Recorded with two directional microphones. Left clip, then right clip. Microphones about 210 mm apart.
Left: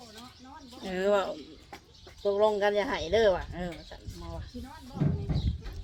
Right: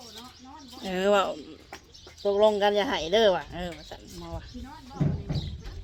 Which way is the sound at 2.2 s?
35° right (ahead or behind).